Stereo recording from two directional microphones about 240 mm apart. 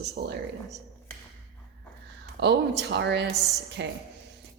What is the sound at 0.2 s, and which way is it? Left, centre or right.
Speech, right.